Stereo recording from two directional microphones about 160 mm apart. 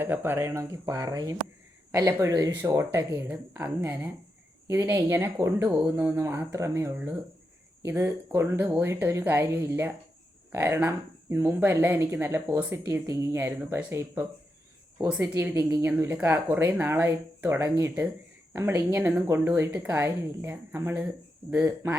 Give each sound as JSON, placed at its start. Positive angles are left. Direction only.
{"t": 0.0, "sound": "speech", "side_deg": -15}